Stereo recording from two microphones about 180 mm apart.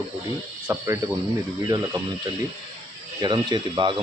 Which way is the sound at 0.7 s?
15° right (ahead or behind).